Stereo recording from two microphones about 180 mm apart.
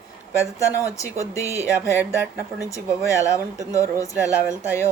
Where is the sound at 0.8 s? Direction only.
15° left (ahead or behind).